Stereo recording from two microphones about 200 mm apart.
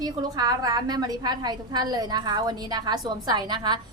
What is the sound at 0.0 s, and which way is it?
A woman's voice, 20° right (ahead or behind).